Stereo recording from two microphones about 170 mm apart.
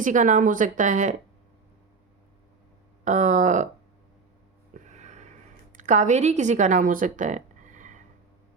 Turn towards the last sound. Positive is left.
turn(degrees=-50)  # may be behind; listen again after turning